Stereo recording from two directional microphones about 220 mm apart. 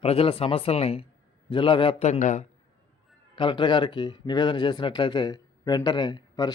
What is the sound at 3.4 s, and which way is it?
Speech, 20° left (ahead or behind).